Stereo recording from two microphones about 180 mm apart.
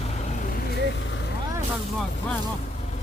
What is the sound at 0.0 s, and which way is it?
Vehicle, 35° left (ahead or behind).